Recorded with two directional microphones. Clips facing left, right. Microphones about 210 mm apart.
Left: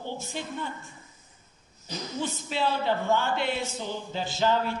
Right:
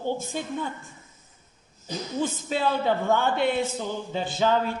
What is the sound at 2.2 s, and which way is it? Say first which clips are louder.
A man's voice: right 3 dB; 50° right (ahead or behind).